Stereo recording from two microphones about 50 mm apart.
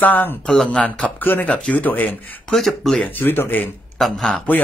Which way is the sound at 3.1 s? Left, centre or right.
Left.